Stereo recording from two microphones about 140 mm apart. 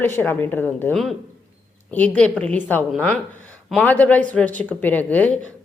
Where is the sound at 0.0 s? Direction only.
15° left (ahead or behind).